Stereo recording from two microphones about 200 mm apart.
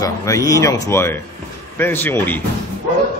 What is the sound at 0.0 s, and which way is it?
Speech, 15° left (ahead or behind).